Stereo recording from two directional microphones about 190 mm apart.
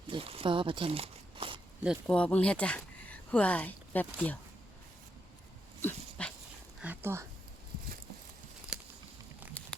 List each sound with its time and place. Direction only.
0.1 s a sound: 30° right (ahead or behind)
1.8 s speech: centre (ahead or behind)
5.8 s dog: 5° left (ahead or behind)
6.7 s speech: 10° right (ahead or behind)
8.7 s a sound: 5° right (ahead or behind)
9.6 s crumpling: 5° left (ahead or behind)